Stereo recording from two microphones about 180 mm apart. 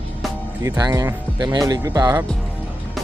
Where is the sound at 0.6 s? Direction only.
15° right (ahead or behind).